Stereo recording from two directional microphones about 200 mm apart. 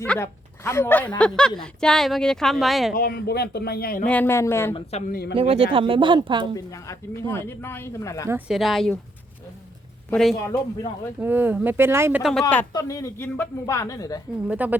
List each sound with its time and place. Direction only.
0.0 s speech: 10° left (ahead or behind)
2.9 s speech: 50° left (ahead or behind)
4.0 s speech: 10° left (ahead or behind)
4.7 s speech: 30° left (ahead or behind)
5.3 s speech: 30° right (ahead or behind)
6.7 s speech: 15° left (ahead or behind)
8.3 s speech: centre (ahead or behind)
10.1 s speech: centre (ahead or behind)
10.3 s speech: 15° left (ahead or behind)
11.2 s speech: 10° right (ahead or behind)
12.2 s speech: 5° left (ahead or behind)
12.7 s speech: 15° left (ahead or behind)
14.4 s speech: 10° right (ahead or behind)